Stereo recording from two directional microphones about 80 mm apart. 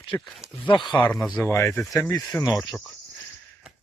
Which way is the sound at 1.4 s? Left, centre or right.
Left.